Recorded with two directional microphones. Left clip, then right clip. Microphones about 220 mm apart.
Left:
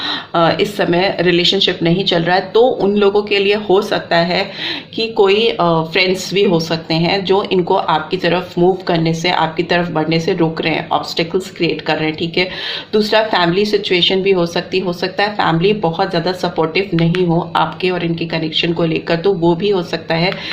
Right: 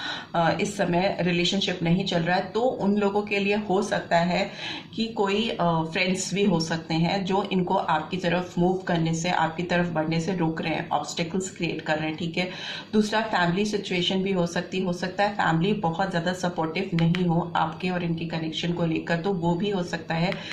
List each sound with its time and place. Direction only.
0.3 s speech: 45° left (ahead or behind)